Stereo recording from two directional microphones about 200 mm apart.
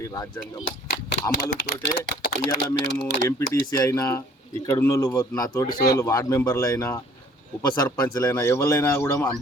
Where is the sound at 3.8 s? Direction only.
15° left (ahead or behind).